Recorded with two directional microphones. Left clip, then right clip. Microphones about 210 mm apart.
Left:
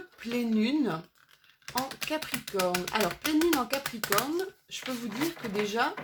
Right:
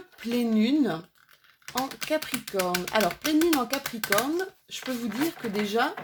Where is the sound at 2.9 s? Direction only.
35° right (ahead or behind).